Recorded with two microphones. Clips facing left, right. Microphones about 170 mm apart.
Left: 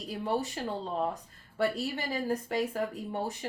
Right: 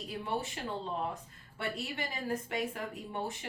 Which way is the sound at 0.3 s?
40° left (ahead or behind).